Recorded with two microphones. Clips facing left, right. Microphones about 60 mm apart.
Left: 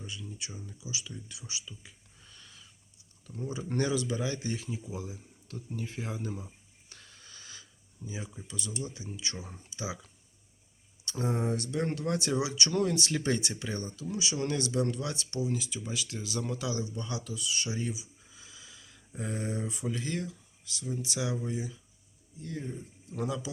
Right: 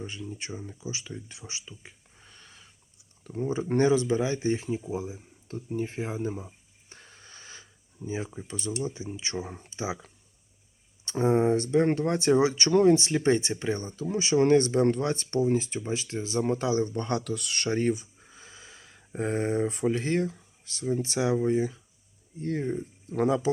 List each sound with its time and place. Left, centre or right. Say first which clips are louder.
0.0 s speech: right 6 dB; right
6.9 s a sound: right 4 dB; right
8.3 s speech: right 7 dB; right
16.8 s speech: right 9 dB; right